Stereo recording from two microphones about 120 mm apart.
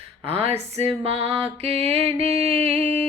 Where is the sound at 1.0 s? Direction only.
55° right (ahead or behind).